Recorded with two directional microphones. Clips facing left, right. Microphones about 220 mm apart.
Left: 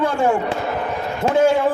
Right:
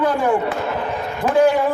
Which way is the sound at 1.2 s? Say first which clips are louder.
Right 1 dB; 25° left (ahead or behind).